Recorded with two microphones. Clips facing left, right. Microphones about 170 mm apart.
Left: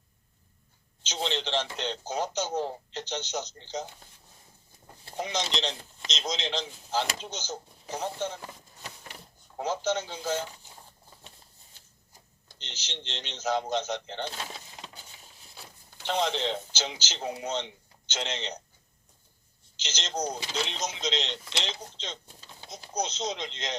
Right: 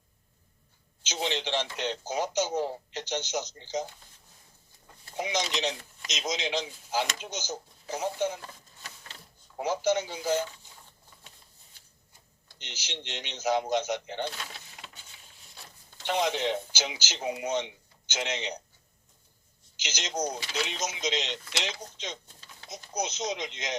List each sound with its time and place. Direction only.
1.0 s speech: 10° right (ahead or behind)
5.1 s speech: 10° right (ahead or behind)
8.4 s a sound: 15° left (ahead or behind)
9.6 s speech: 10° right (ahead or behind)
12.5 s speech: 10° right (ahead or behind)
16.0 s speech: 10° right (ahead or behind)
19.7 s speech: 10° right (ahead or behind)